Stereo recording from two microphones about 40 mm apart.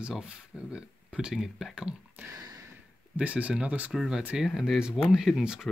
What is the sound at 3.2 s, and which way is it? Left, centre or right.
Speech, right.